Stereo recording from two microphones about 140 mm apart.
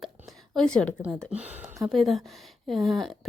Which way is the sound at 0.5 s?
5° left (ahead or behind).